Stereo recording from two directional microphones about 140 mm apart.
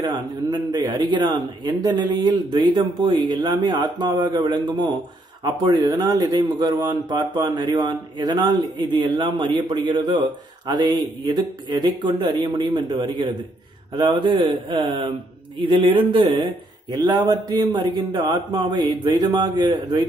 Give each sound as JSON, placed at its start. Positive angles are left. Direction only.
{"t": 0.0, "sound": "a man's voice", "side_deg": -30}